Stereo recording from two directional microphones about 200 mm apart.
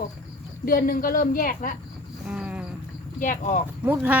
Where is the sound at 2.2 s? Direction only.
5° right (ahead or behind).